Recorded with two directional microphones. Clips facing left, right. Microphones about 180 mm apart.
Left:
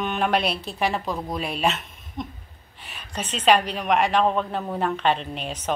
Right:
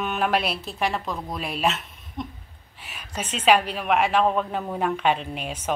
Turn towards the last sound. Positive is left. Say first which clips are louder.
# even
turn(degrees=-10)  # may be behind; listen again after turning